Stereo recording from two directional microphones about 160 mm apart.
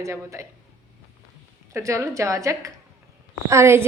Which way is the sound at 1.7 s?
15° right (ahead or behind).